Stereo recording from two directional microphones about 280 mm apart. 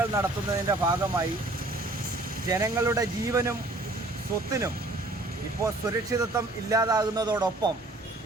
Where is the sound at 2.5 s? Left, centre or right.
Centre.